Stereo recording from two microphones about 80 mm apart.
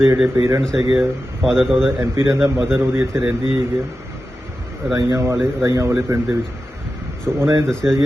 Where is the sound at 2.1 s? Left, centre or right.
Right.